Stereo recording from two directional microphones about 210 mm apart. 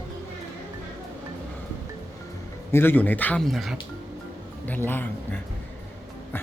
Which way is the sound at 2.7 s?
10° left (ahead or behind).